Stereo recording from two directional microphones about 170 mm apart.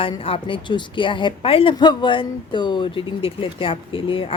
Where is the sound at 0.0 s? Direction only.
30° left (ahead or behind).